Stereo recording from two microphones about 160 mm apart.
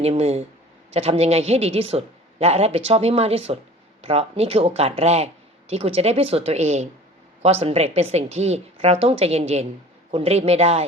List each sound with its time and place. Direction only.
0.0 s speech: 40° right (ahead or behind)